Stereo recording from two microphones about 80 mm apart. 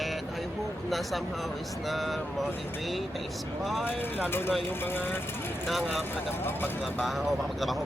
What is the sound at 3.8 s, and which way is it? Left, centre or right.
Speech, left.